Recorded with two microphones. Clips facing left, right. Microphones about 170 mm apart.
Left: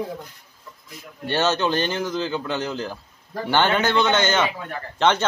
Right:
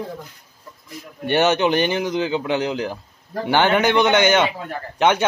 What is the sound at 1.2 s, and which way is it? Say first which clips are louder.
A man's voice: right 4 dB; 15° right (ahead or behind).